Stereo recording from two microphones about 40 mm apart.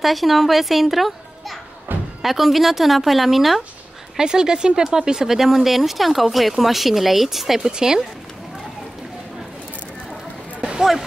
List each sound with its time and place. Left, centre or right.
0.0 s speech: centre
1.9 s a sound: right
2.2 s speech: centre
4.2 s speech: centre
10.8 s speech: centre